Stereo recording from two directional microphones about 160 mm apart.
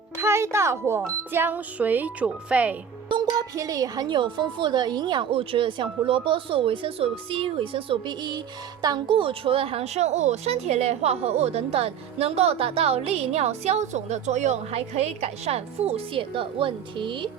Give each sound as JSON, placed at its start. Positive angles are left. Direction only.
{"t": 0.2, "sound": "speech", "side_deg": -15}
{"t": 3.1, "sound": "a woman's voice", "side_deg": -30}